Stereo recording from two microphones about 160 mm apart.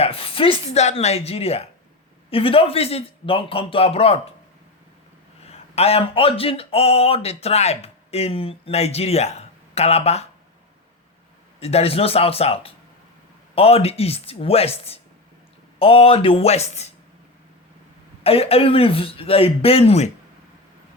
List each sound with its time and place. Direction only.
0.0 s speech: 35° left (ahead or behind)
5.5 s speech: 40° left (ahead or behind)
11.6 s speech: 40° left (ahead or behind)
18.2 s speech: 40° left (ahead or behind)